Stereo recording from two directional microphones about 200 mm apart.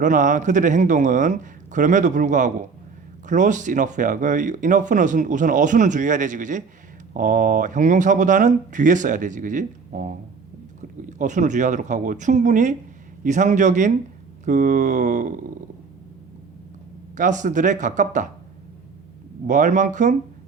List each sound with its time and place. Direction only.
0.0 s speech: 40° right (ahead or behind)
11.2 s speech: 40° right (ahead or behind)
17.2 s speech: 40° right (ahead or behind)
19.5 s speech: 40° right (ahead or behind)